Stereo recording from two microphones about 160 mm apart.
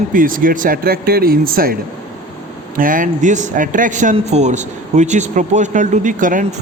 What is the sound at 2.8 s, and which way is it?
A man's voice, 60° right (ahead or behind).